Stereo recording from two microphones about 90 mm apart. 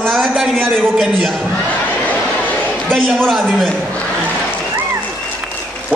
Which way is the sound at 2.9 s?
5° left (ahead or behind).